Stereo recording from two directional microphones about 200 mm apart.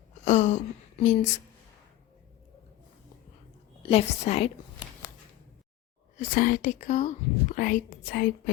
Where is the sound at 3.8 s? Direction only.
30° left (ahead or behind).